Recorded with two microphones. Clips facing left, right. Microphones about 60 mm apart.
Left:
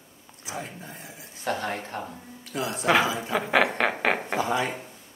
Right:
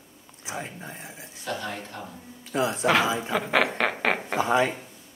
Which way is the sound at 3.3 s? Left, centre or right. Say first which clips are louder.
Left 2 dB; centre.